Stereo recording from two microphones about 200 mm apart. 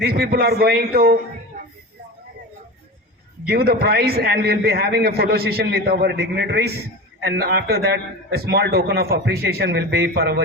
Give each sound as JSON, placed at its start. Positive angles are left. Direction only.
{"t": 0.0, "sound": "a man's voice", "side_deg": -50}
{"t": 3.4, "sound": "a man's voice", "side_deg": -50}